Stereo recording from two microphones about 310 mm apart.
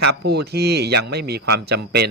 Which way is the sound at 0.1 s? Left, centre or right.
Right.